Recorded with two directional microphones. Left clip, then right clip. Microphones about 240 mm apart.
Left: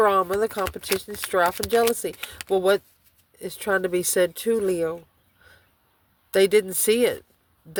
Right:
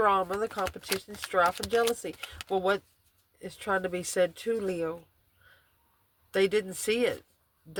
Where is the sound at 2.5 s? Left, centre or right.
Left.